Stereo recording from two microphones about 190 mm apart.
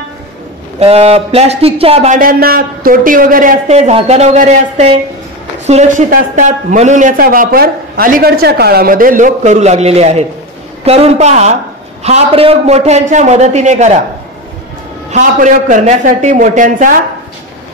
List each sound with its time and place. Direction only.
0.7 s a man's voice: 30° right (ahead or behind)
15.0 s a man's voice: 40° right (ahead or behind)